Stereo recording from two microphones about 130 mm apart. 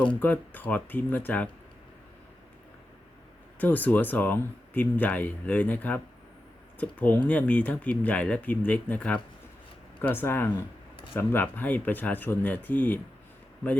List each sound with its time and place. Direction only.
0.0 s speech: 10° left (ahead or behind)
3.6 s speech: 15° left (ahead or behind)